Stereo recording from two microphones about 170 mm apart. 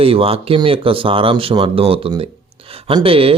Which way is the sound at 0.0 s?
35° right (ahead or behind).